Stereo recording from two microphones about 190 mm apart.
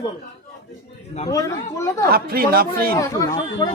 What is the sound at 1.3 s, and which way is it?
Speech, 15° left (ahead or behind).